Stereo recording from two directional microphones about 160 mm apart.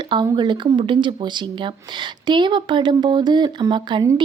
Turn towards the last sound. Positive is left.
turn(degrees=-30)  # may be behind; listen again after turning